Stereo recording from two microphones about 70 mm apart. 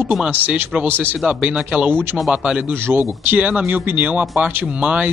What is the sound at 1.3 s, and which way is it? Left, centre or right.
Speech, centre.